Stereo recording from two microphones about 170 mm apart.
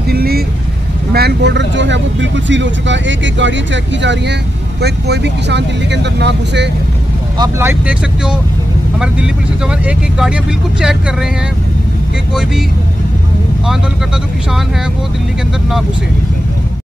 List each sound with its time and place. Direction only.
0.1 s vehicle: 65° right (ahead or behind)
1.1 s speech: 80° right
4.8 s speech: 80° right
7.3 s speech: 20° right (ahead or behind); by 11.0 s 5° right (ahead or behind)